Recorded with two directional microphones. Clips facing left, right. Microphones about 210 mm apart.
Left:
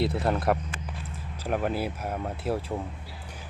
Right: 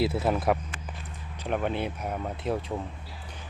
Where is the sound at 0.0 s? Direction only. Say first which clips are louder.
Even; 5° right (ahead or behind).